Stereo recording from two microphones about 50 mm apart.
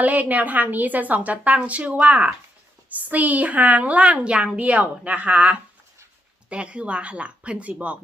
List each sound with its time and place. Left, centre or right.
0.0 s a woman's voice: right